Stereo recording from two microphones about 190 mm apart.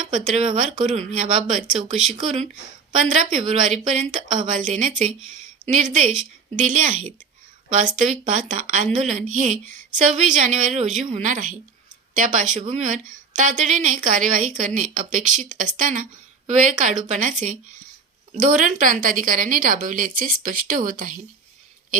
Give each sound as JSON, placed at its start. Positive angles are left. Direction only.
{"t": 0.1, "sound": "a woman's voice", "side_deg": -40}